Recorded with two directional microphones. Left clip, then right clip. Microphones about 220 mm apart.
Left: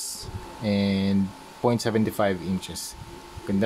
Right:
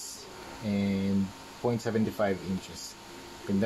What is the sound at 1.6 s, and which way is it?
Speech, 40° left (ahead or behind).